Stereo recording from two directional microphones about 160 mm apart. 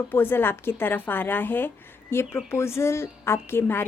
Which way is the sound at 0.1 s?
15° left (ahead or behind).